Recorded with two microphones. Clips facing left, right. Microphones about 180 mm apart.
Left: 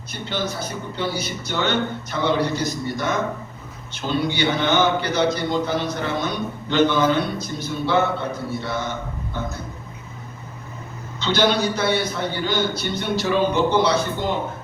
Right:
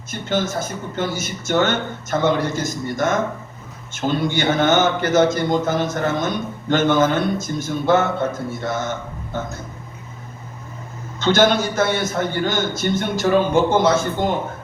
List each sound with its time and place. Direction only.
0.1 s a man's voice: 45° right (ahead or behind)
11.2 s a man's voice: 45° right (ahead or behind)